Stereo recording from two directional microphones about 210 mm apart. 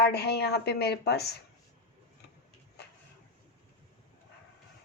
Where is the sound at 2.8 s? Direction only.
50° left (ahead or behind).